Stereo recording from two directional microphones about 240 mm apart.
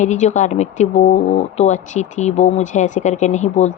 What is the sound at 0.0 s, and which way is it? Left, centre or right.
Speech, left.